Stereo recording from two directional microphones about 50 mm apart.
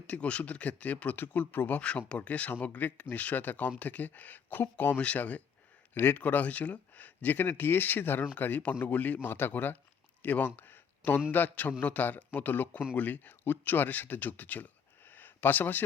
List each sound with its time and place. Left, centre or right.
0.1 s speech: left
4.9 s speech: left